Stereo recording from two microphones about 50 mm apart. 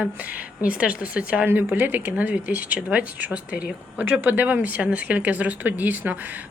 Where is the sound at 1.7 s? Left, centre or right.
Right.